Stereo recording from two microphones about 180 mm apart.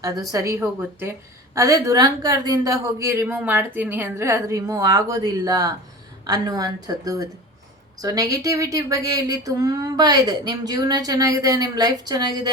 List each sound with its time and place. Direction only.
0.0 s a man's voice: 20° right (ahead or behind)